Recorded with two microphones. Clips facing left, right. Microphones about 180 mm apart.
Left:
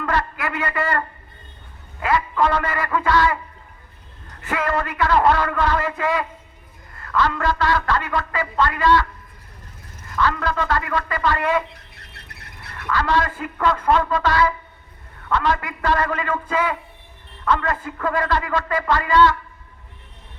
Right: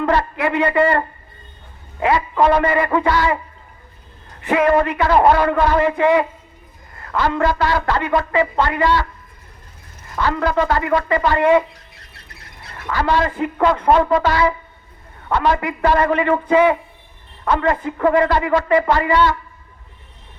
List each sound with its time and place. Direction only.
0.0 s a man's voice: 25° right (ahead or behind)
10.1 s a woman's voice: 25° right (ahead or behind)
11.9 s squawk: 60° left (ahead or behind)
12.7 s a woman's voice: 25° right (ahead or behind)